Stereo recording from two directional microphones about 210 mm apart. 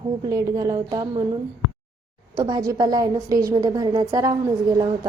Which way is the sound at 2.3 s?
20° right (ahead or behind).